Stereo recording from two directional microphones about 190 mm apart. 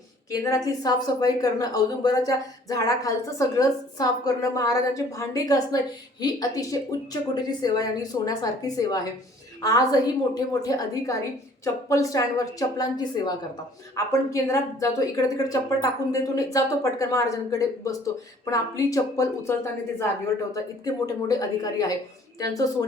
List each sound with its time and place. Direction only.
0.3 s a woman's voice: 15° left (ahead or behind)